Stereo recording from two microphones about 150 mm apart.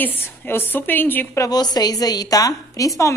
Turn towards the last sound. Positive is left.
turn(degrees=20)  # may be behind; listen again after turning